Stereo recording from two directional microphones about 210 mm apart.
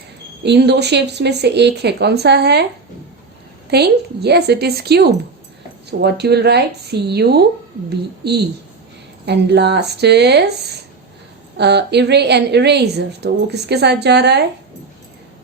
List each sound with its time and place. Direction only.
0.4 s a woman's voice: 55° right (ahead or behind)
3.7 s a woman's voice: 50° right (ahead or behind)